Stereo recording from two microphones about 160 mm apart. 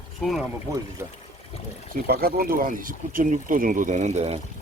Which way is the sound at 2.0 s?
70° right (ahead or behind).